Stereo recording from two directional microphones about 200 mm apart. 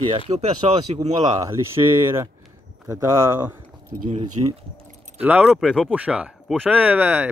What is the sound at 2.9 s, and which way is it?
Speech, 15° right (ahead or behind).